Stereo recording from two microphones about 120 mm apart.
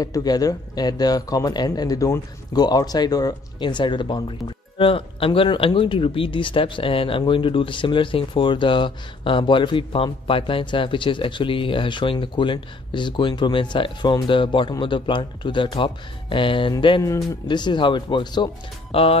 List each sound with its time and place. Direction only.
0.0 s speech: 30° left (ahead or behind)
18.9 s speech: 50° left (ahead or behind)